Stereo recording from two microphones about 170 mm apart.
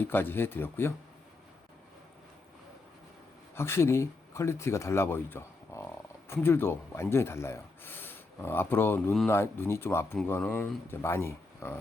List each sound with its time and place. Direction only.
0.0 s speech: 10° left (ahead or behind)
3.5 s speech: 15° left (ahead or behind)